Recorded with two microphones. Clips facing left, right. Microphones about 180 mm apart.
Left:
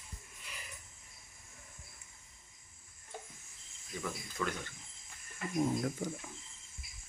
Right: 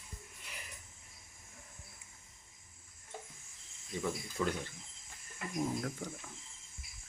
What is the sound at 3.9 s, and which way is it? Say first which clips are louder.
Speech: right 3 dB; 25° right (ahead or behind).